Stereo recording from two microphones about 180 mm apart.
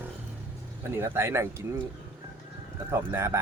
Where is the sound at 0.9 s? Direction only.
15° right (ahead or behind).